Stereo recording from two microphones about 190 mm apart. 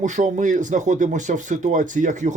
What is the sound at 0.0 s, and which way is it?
Speech, 40° right (ahead or behind).